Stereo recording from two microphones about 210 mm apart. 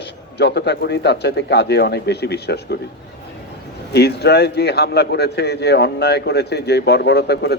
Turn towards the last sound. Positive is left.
turn(degrees=50)  # may be behind; listen again after turning